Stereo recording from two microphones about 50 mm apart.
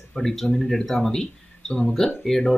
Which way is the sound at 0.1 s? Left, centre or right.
Centre.